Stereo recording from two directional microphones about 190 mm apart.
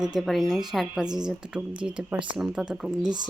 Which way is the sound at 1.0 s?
20° right (ahead or behind).